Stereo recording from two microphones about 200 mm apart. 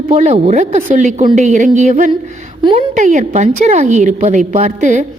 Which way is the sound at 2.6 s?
25° right (ahead or behind).